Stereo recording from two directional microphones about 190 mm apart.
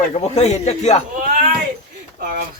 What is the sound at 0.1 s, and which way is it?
Speech, 35° left (ahead or behind).